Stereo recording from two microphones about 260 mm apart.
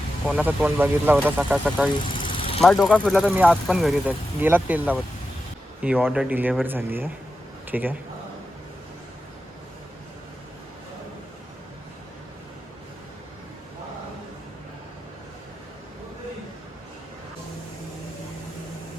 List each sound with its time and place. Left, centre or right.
0.3 s speech: centre
2.1 s vehicle: centre
2.6 s speech: centre